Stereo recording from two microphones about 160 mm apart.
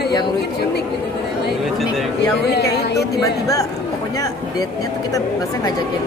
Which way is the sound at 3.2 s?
20° left (ahead or behind).